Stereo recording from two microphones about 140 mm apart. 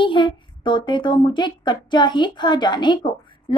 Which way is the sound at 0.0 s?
35° left (ahead or behind).